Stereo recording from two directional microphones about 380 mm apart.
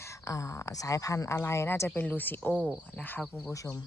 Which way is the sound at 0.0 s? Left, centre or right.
Centre.